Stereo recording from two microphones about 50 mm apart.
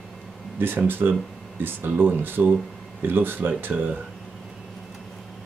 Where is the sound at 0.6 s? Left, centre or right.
Right.